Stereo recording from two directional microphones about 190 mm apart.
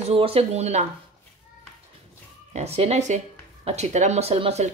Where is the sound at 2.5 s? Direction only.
35° right (ahead or behind).